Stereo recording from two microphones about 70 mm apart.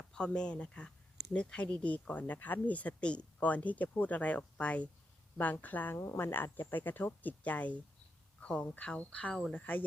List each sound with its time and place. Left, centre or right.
0.0 s speech: centre